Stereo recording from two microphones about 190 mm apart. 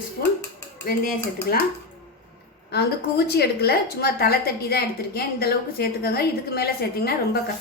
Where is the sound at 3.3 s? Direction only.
60° left (ahead or behind).